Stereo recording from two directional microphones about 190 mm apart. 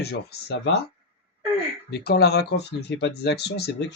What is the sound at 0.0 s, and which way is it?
Speech, 60° left (ahead or behind).